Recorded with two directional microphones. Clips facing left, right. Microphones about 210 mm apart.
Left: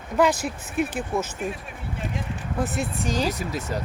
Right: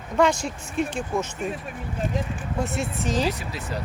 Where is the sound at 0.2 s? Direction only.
5° left (ahead or behind).